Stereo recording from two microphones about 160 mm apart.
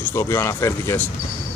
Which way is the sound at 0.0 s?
15° left (ahead or behind).